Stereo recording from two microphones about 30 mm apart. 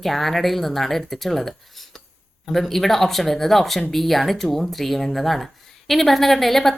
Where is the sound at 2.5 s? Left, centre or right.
Centre.